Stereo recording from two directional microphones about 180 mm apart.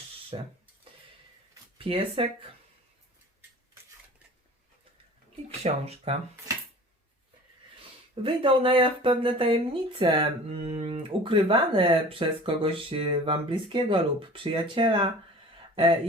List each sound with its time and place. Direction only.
0.3 s speech: 30° right (ahead or behind)
1.8 s speech: 30° right (ahead or behind)
5.6 s speech: 35° right (ahead or behind)
8.1 s speech: 30° right (ahead or behind)